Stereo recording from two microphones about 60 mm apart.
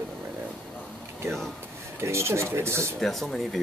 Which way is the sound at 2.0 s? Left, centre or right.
Right.